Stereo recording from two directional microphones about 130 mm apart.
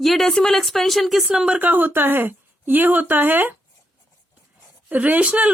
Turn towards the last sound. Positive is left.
turn(degrees=-10)  # may be behind; listen again after turning